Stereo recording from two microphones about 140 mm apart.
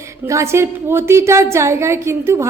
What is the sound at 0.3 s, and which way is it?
A woman's voice, 20° right (ahead or behind).